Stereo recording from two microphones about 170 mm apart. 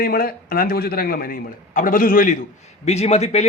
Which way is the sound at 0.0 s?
60° left (ahead or behind).